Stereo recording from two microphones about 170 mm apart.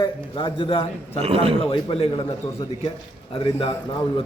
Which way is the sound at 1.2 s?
35° right (ahead or behind).